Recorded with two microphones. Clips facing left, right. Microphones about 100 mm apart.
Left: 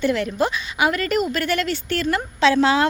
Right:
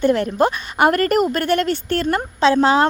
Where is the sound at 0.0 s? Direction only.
45° right (ahead or behind).